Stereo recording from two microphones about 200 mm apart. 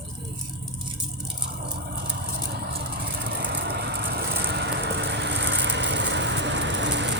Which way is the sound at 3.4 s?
55° right (ahead or behind).